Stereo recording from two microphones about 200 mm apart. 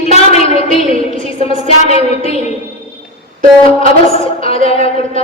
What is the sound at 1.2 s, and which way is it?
Music, 30° left (ahead or behind).